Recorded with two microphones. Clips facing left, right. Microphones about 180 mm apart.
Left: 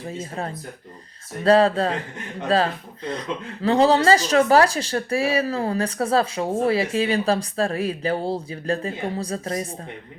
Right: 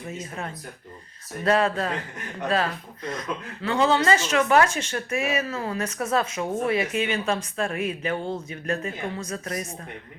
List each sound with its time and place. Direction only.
0.0 s speech: 30° left (ahead or behind)